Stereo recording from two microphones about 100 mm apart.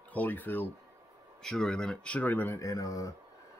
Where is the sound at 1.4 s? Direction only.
5° left (ahead or behind).